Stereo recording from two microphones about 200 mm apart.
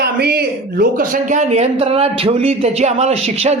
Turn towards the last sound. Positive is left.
turn(degrees=-30)  # may be behind; listen again after turning